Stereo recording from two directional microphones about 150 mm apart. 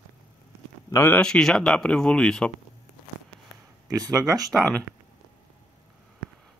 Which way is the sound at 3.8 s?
25° right (ahead or behind).